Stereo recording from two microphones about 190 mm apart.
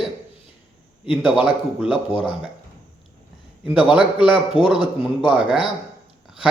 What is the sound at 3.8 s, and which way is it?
Speech, 25° left (ahead or behind).